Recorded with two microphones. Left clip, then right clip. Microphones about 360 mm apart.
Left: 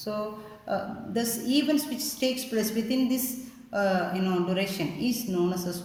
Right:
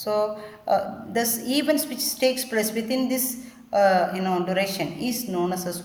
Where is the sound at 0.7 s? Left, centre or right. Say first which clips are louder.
Right 7 dB; right.